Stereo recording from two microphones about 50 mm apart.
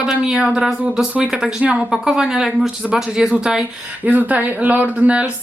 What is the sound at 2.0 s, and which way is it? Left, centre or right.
Speech, centre.